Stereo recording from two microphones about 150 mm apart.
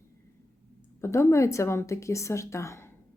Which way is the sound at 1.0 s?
20° left (ahead or behind).